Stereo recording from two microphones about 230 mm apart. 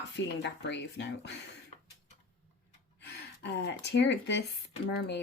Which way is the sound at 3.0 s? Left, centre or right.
Left.